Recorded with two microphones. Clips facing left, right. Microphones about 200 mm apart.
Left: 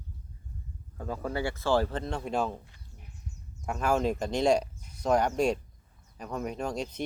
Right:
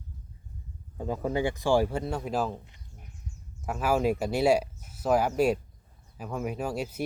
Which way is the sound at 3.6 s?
5° right (ahead or behind).